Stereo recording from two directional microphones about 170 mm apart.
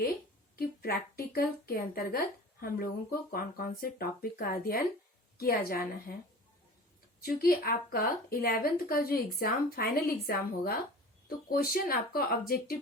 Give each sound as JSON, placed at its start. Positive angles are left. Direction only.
{"t": 0.5, "sound": "a woman's voice", "side_deg": 60}
{"t": 7.2, "sound": "a woman's voice", "side_deg": 60}